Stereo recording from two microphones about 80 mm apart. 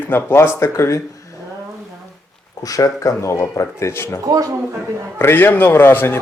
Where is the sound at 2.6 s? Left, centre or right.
Left.